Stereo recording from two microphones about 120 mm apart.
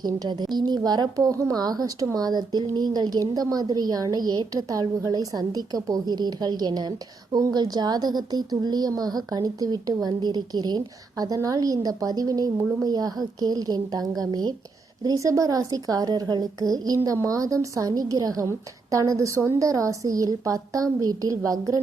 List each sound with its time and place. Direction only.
0.0 s a woman's voice: 35° right (ahead or behind)